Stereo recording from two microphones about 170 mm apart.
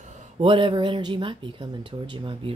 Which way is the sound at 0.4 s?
30° right (ahead or behind).